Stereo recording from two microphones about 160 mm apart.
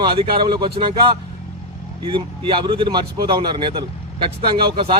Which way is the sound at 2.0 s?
30° right (ahead or behind).